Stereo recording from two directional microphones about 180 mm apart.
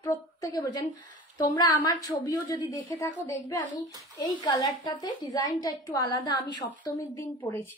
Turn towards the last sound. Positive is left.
turn(degrees=15)  # may be behind; listen again after turning